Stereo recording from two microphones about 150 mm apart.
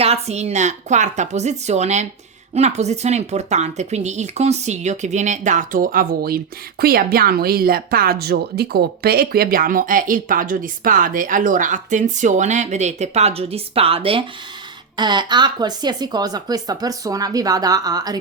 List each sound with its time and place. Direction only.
0.0 s speech: 45° right (ahead or behind); by 18.2 s 25° right (ahead or behind)